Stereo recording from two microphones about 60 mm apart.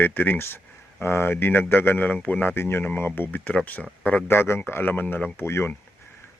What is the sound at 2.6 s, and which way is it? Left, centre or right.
Speech, left.